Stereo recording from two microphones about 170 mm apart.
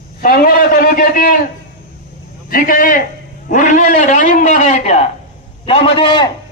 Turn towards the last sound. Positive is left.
turn(degrees=30)  # may be behind; listen again after turning